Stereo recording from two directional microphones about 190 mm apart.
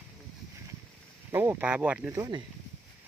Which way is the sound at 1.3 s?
15° right (ahead or behind).